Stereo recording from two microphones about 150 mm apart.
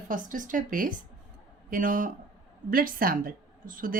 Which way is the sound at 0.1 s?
60° right (ahead or behind).